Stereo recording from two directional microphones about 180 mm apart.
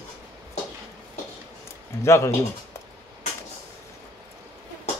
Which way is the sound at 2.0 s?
15° left (ahead or behind).